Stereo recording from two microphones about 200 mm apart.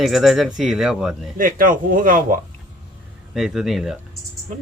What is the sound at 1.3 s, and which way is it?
Speech, 45° right (ahead or behind).